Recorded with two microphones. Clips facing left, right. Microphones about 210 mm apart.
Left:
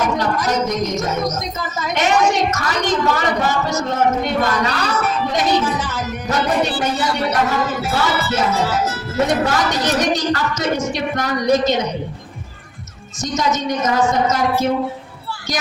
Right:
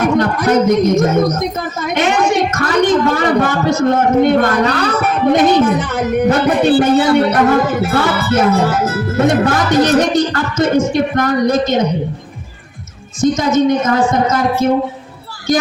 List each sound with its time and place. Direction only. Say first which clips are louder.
0.0 s speech: right 6 dB; 55° right (ahead or behind)
13.2 s speech: right 8 dB; 55° right (ahead or behind)